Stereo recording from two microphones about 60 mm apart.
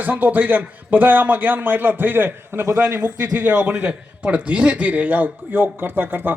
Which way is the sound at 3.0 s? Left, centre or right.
Right.